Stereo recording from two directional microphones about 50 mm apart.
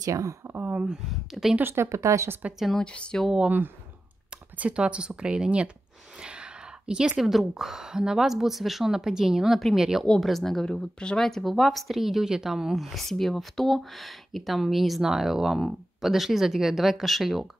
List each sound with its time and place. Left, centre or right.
0.1 s speech: right
0.6 s speech: right
1.1 s speech: centre
1.6 s speech: right
1.9 s speech: right
2.7 s speech: centre
3.4 s speech: right
4.3 s speech: right
6.1 s a sound: centre
7.2 s a woman's voice: centre
10.2 s speech: centre
11.2 s speech: centre